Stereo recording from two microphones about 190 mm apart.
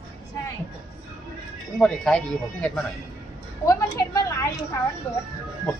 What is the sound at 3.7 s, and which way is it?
A woman's voice, 20° left (ahead or behind).